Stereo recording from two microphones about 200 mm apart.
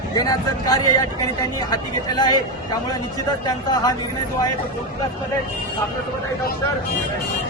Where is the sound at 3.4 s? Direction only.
20° left (ahead or behind).